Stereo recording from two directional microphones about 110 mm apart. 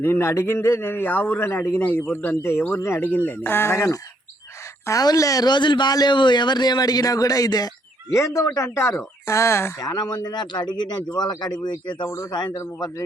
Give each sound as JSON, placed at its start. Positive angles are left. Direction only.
{"t": 0.0, "sound": "speech", "side_deg": 20}
{"t": 9.8, "sound": "speech", "side_deg": 40}
{"t": 12.0, "sound": "speech", "side_deg": 25}